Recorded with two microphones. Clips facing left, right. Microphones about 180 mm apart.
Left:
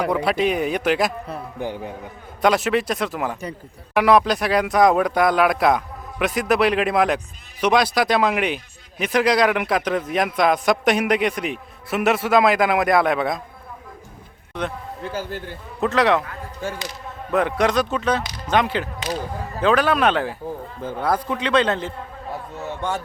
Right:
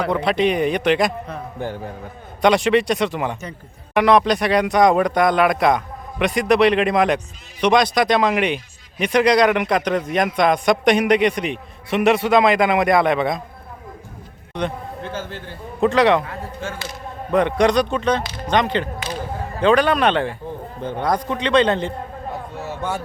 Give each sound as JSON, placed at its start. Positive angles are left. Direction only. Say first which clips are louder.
{"t": 0.0, "sound": "a man's voice", "louder": "right 1 dB", "side_deg": 10}
{"t": 2.4, "sound": "a man's voice", "louder": "right 3 dB", "side_deg": 5}
{"t": 15.8, "sound": "a man's voice", "louder": "right 3 dB", "side_deg": 0}
{"t": 16.2, "sound": "speech", "louder": "right 3 dB", "side_deg": -25}
{"t": 17.3, "sound": "a man's voice", "louder": "right 3 dB", "side_deg": 5}